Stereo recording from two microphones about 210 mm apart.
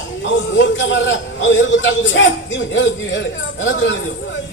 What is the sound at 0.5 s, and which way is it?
A man's voice, 60° left (ahead or behind).